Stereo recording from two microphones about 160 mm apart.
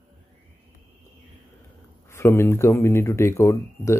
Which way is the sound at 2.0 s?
15° left (ahead or behind).